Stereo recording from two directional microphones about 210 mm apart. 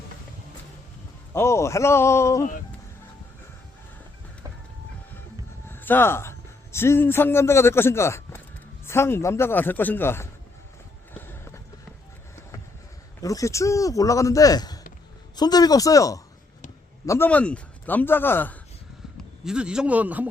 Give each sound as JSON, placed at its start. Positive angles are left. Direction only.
{"t": 1.3, "sound": "a man's voice", "side_deg": 15}
{"t": 5.6, "sound": "a man's voice", "side_deg": 10}
{"t": 11.1, "sound": "run", "side_deg": 10}
{"t": 13.2, "sound": "a man's voice", "side_deg": 15}
{"t": 19.1, "sound": "speech", "side_deg": -5}